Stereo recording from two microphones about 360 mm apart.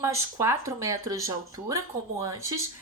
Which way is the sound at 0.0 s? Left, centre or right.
Centre.